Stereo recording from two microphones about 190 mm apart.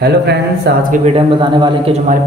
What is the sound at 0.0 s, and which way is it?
Speech, 60° right (ahead or behind).